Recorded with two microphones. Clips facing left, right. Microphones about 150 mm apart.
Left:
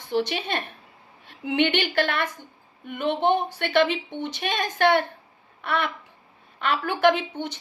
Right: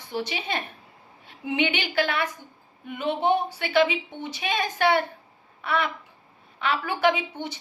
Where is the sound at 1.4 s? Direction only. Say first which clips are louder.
Left 3 dB; 60° left (ahead or behind).